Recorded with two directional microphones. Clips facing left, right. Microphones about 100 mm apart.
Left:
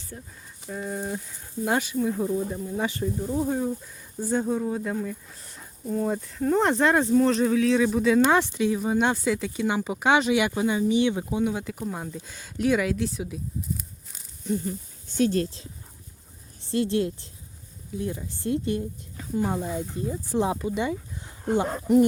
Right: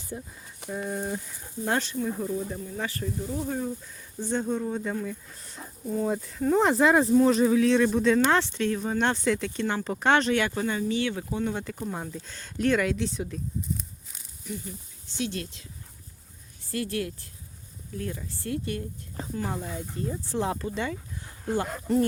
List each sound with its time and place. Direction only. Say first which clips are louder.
0.1 s speech: right 5 dB; 15° right (ahead or behind)
0.7 s speech: even; centre (ahead or behind)
14.4 s speech: left 9 dB; 45° left (ahead or behind); by 22.0 s 15° left (ahead or behind)